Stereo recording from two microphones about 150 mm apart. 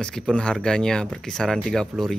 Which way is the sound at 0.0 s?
5° left (ahead or behind).